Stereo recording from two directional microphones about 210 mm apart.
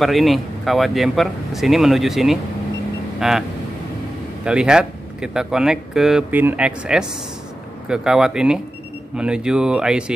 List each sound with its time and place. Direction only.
0.0 s speech: centre (ahead or behind)
4.5 s speech: 5° right (ahead or behind)